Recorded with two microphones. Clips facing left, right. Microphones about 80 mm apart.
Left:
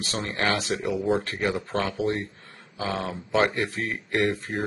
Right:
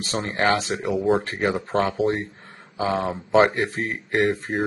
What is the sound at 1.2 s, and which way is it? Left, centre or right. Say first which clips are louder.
A man's voice: right 3 dB; right.